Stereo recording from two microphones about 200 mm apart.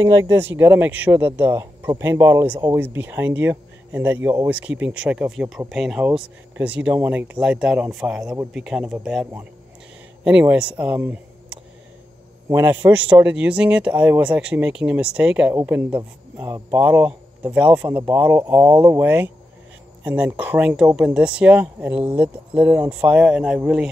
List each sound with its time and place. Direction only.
0.0 s speech: 15° right (ahead or behind)